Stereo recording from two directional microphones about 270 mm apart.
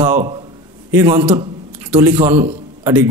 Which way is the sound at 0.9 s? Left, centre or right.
Centre.